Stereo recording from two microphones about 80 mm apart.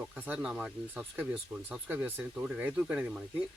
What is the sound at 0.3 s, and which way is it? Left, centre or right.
Speech, centre.